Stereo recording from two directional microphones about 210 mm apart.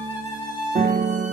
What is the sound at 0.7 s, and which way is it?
Music, 45° right (ahead or behind).